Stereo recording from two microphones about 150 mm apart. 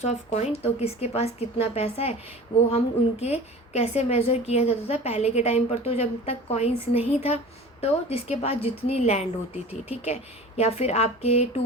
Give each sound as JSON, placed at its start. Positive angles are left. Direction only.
{"t": 0.0, "sound": "a woman's voice", "side_deg": 45}